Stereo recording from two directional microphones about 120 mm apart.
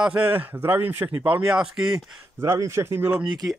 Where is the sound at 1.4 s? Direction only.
5° right (ahead or behind).